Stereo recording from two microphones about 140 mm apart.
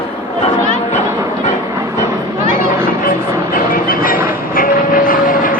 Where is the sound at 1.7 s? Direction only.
20° right (ahead or behind).